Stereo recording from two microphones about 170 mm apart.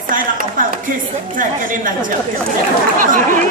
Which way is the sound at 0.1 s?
50° right (ahead or behind).